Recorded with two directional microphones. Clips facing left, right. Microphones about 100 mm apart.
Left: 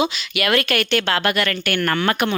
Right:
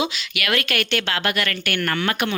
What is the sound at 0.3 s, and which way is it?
Speech, 35° left (ahead or behind).